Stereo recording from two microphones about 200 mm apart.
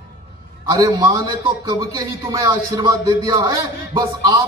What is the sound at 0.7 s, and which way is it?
A man's voice, 20° right (ahead or behind).